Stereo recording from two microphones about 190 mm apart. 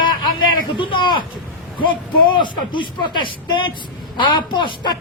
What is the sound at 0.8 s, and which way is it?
A man's voice, 25° left (ahead or behind).